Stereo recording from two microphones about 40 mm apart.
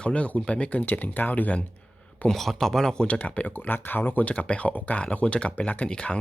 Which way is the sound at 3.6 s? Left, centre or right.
Left.